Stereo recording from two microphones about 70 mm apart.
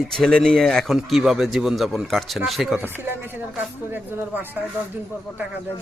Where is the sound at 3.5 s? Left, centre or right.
Right.